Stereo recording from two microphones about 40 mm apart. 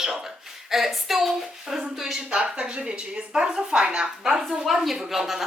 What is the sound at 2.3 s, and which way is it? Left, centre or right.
Speech, right.